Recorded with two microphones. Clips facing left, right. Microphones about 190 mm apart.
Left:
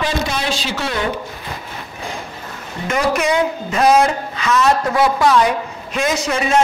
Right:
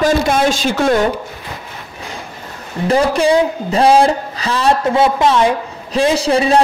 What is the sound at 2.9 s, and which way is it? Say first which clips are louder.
Speech: right 5 dB; 30° right (ahead or behind).